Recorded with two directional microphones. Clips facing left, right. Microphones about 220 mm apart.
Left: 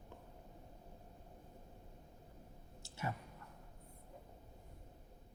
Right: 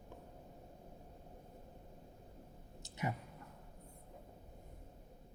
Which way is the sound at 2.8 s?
15° right (ahead or behind).